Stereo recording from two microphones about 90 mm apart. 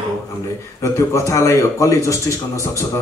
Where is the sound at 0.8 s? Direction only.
35° left (ahead or behind).